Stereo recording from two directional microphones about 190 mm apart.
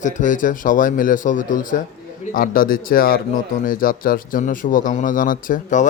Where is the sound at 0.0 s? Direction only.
40° left (ahead or behind).